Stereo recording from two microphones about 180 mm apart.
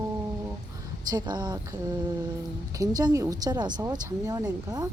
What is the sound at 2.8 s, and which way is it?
Speech, 20° right (ahead or behind).